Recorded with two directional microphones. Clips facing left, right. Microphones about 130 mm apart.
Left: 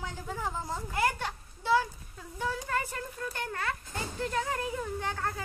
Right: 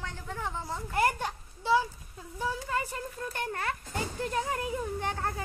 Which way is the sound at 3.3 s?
30° right (ahead or behind).